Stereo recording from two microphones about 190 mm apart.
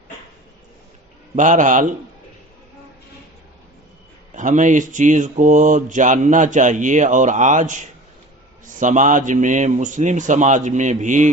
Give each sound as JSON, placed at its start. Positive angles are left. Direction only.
{"t": 1.4, "sound": "speech", "side_deg": -40}
{"t": 4.4, "sound": "mantra", "side_deg": -40}